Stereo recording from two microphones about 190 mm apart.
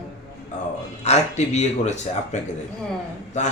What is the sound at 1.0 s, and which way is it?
Speech, 35° left (ahead or behind).